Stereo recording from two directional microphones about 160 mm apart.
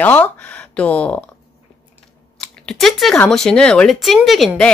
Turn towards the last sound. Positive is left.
turn(degrees=0)  # may be behind; listen again after turning